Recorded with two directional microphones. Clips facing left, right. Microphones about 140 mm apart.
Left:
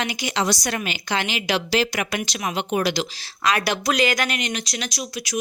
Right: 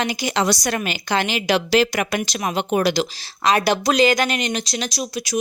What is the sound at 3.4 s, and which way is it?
Speech, 25° right (ahead or behind).